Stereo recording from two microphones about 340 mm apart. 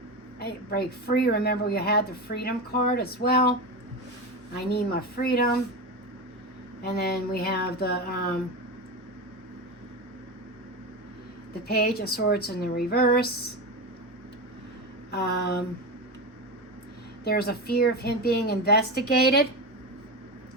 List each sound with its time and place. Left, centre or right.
0.3 s a woman's voice: left
4.5 s a woman's voice: left
6.8 s a woman's voice: left
11.7 s a woman's voice: left
15.1 s a woman's voice: left
17.2 s a woman's voice: left